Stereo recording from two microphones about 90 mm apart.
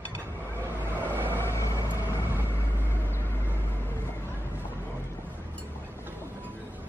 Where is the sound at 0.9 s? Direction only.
20° right (ahead or behind).